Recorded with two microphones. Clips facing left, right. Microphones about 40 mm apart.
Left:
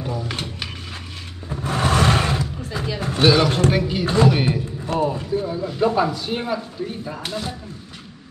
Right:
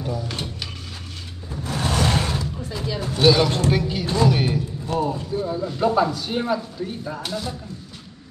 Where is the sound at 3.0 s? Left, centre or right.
Left.